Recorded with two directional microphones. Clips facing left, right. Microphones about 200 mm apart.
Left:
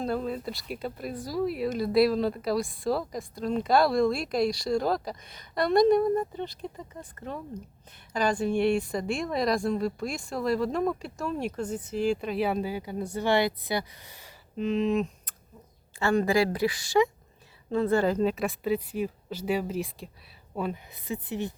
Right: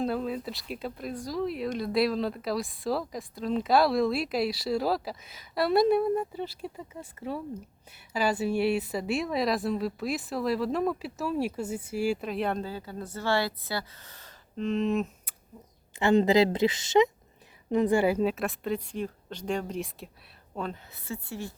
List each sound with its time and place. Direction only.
0.0 s speech: centre (ahead or behind)
16.0 s a woman's voice: 20° right (ahead or behind); by 21.5 s 20° left (ahead or behind)